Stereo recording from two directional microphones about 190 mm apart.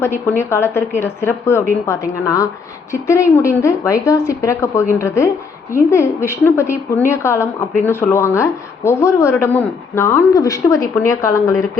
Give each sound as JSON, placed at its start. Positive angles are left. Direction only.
{"t": 0.0, "sound": "a woman's voice", "side_deg": 15}